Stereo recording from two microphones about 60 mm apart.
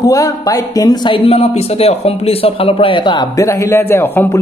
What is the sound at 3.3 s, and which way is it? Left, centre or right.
Speech, left.